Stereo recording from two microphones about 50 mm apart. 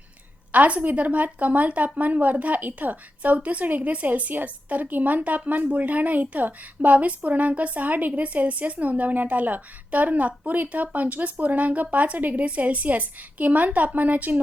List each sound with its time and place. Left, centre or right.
0.5 s a woman's voice: right